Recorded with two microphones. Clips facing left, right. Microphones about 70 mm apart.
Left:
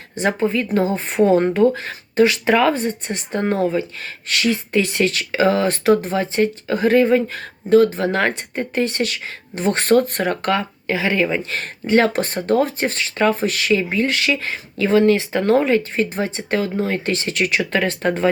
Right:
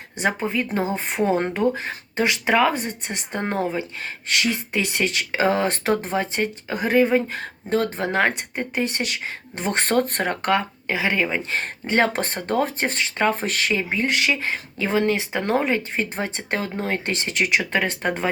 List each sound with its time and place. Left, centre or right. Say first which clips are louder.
0.2 s speech: left 4 dB; centre
7.3 s speech: left 9 dB; right
13.3 s speech: left 5 dB; right; by 18.3 s centre